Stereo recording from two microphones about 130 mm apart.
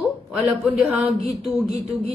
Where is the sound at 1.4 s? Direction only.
45° right (ahead or behind).